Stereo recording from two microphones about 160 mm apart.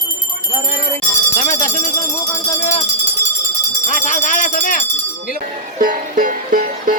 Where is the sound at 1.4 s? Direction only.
50° left (ahead or behind).